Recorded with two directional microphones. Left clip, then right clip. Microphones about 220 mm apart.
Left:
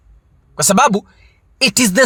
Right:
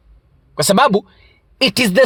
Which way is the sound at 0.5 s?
25° right (ahead or behind).